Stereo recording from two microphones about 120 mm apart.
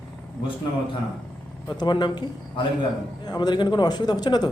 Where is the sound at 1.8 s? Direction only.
40° left (ahead or behind).